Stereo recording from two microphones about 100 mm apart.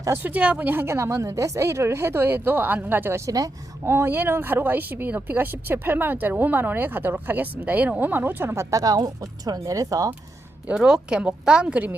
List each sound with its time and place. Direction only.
0.2 s speech: 15° right (ahead or behind); by 3.5 s 35° right (ahead or behind)
3.8 s speech: 25° right (ahead or behind)
8.7 s speech: 40° right (ahead or behind)
10.7 s a woman's voice: 5° right (ahead or behind)